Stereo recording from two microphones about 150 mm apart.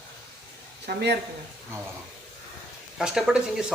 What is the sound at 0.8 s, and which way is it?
Speech, 90° right.